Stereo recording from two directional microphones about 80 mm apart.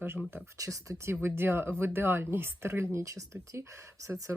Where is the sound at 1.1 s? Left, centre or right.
Right.